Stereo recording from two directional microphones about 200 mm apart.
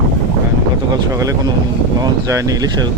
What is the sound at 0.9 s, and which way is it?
Speech, 15° right (ahead or behind).